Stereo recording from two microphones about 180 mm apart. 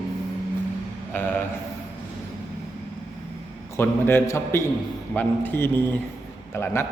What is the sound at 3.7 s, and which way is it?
A man's voice, 15° left (ahead or behind).